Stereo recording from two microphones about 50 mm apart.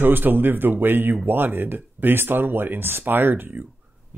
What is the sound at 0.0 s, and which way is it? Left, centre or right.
Speech, right.